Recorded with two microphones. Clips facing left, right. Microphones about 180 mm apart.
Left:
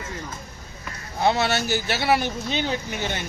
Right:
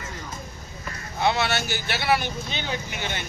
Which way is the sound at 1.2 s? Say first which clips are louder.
Left 2 dB; 40° left (ahead or behind).